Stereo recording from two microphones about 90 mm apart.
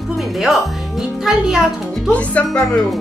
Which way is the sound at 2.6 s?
5° left (ahead or behind).